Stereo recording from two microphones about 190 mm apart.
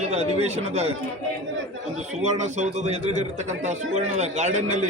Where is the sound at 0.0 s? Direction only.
35° right (ahead or behind).